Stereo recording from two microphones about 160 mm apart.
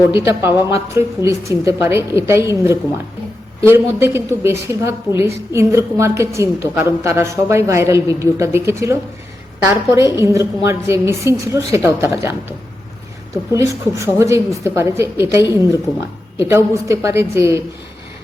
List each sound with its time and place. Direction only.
0.3 s a woman's voice: 15° right (ahead or behind)